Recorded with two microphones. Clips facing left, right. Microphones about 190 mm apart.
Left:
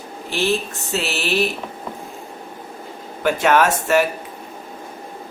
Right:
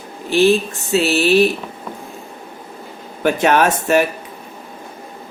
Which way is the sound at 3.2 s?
20° right (ahead or behind).